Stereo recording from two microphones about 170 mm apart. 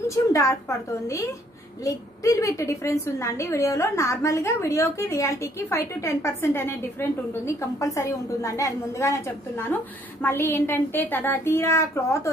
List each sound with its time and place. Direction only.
0.1 s a woman's voice: 20° left (ahead or behind)